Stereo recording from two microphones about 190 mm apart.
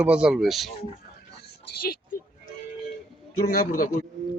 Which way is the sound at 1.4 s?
50° left (ahead or behind).